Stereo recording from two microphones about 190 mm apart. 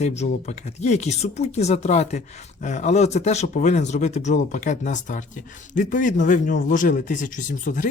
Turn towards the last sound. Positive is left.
turn(degrees=45)  # may be behind; listen again after turning